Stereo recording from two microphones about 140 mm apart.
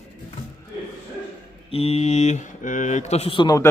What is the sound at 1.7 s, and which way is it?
Speech, 45° left (ahead or behind).